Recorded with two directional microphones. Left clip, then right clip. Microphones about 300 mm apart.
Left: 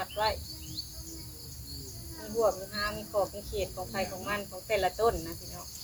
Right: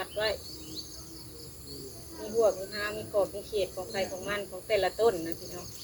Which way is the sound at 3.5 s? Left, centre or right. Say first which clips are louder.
Right 3 dB; centre.